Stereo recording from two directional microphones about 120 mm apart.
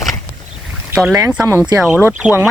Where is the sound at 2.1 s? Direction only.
10° right (ahead or behind).